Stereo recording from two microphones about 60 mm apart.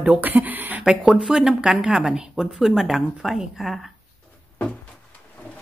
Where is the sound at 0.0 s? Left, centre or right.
Right.